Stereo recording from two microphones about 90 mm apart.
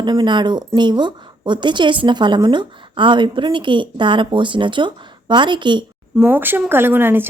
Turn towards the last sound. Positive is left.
turn(degrees=-25)  # may be behind; listen again after turning